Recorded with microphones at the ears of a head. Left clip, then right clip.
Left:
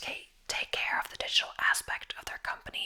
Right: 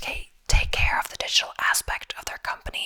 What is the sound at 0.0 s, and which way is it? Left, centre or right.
Whispering, right.